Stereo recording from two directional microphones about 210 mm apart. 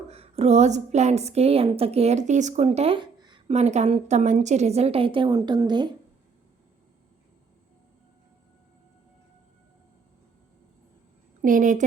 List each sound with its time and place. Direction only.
0.1 s a woman's voice: 30° right (ahead or behind)
11.4 s a woman's voice: 40° right (ahead or behind)